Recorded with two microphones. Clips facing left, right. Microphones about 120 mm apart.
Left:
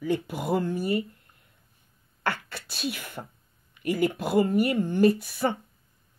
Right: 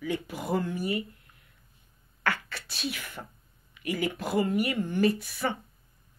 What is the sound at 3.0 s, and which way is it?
Speech, 15° left (ahead or behind).